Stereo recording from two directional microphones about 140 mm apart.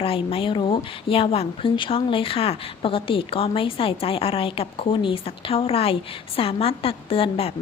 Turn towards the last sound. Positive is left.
turn(degrees=45)  # may be behind; listen again after turning